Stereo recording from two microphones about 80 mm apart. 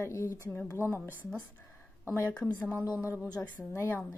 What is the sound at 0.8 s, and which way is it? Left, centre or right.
Speech, right.